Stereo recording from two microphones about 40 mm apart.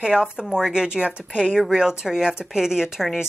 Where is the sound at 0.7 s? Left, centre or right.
Right.